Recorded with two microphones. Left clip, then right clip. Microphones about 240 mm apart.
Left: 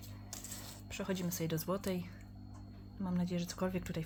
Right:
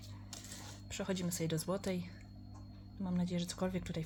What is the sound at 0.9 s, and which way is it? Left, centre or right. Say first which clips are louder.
Speech: even; centre.